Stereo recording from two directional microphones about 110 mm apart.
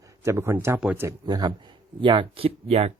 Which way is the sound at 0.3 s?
25° right (ahead or behind).